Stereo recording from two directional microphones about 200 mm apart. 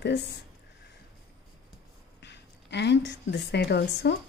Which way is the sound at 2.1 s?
60° left (ahead or behind).